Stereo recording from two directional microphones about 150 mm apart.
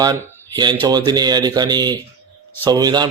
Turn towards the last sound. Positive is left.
turn(degrees=-30)  # may be behind; listen again after turning